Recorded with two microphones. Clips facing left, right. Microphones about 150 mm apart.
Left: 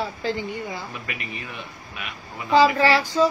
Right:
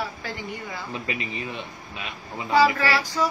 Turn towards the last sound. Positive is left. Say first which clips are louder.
# left 5 dB
turn(degrees=25)  # may be behind; listen again after turning